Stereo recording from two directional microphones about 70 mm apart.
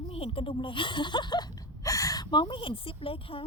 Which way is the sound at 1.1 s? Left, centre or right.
Left.